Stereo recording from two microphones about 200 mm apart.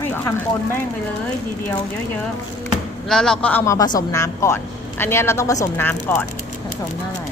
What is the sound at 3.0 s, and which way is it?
Speech, centre (ahead or behind).